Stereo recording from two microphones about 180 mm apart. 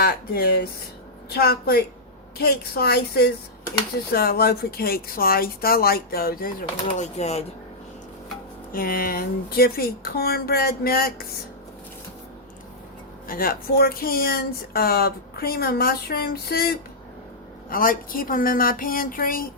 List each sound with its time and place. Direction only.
0.0 s speech: 60° left (ahead or behind); by 7.4 s 35° left (ahead or behind)
8.7 s speech: 55° left (ahead or behind)
13.2 s speech: 50° left (ahead or behind)